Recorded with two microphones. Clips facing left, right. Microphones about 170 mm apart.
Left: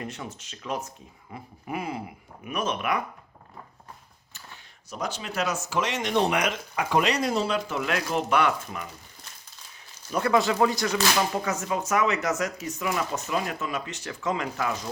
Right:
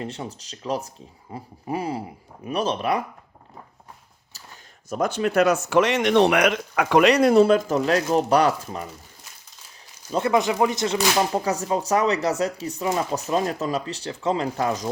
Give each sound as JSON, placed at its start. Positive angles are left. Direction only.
{"t": 0.0, "sound": "speech", "side_deg": -30}
{"t": 4.9, "sound": "speech", "side_deg": -50}
{"t": 7.8, "sound": "speech", "side_deg": -30}
{"t": 10.1, "sound": "speech", "side_deg": -25}